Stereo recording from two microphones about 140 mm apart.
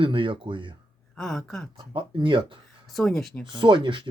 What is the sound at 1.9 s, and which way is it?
Speech, 35° right (ahead or behind).